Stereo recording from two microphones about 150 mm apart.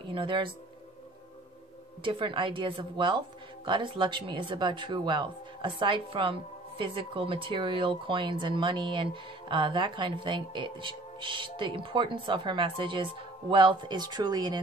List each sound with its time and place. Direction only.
0.1 s speech: 35° right (ahead or behind)
2.0 s speech: 35° right (ahead or behind)